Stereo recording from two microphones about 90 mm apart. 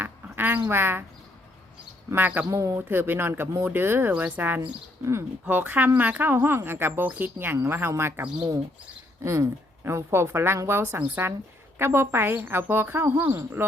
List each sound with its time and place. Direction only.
0.0 s a sound: 20° right (ahead or behind)
0.7 s a woman's voice: 25° right (ahead or behind)
2.0 s a woman's voice: 20° right (ahead or behind)
2.5 s speech: 35° right (ahead or behind)
2.9 s a woman's voice: 25° right (ahead or behind)
9.2 s a woman's voice: 30° right (ahead or behind)